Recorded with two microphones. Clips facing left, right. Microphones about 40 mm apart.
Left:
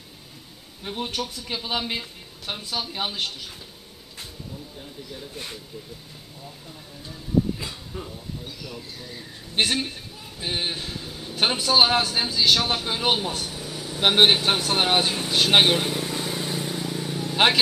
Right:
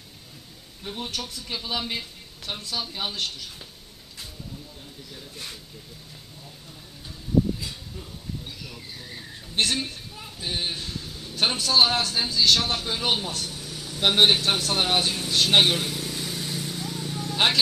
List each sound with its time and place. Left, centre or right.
0.8 s speech: centre
5.1 s speech: centre
7.5 s a sound: left
9.6 s a man's voice: centre